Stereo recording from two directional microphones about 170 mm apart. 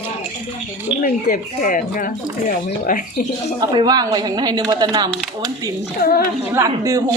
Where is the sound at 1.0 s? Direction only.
50° left (ahead or behind).